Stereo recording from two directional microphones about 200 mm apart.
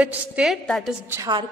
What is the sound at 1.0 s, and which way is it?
Speech, 10° right (ahead or behind).